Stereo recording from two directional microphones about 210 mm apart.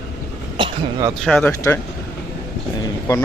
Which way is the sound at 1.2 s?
5° left (ahead or behind).